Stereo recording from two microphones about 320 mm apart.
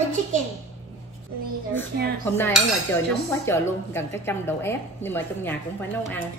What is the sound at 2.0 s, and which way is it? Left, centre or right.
Dishes, right.